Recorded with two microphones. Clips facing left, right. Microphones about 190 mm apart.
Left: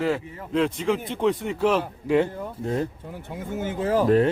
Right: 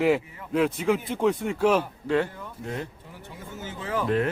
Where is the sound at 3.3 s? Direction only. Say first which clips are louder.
Left 9 dB; 55° left (ahead or behind); by 4.3 s 35° left (ahead or behind).